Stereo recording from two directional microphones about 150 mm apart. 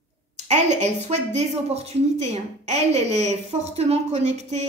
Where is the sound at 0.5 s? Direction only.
50° right (ahead or behind).